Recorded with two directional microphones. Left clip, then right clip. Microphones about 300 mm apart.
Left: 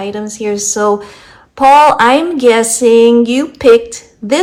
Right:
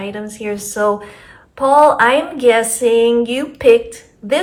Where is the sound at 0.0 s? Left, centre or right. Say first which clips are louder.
Left 6 dB; centre.